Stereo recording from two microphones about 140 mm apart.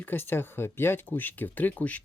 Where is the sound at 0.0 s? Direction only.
15° left (ahead or behind).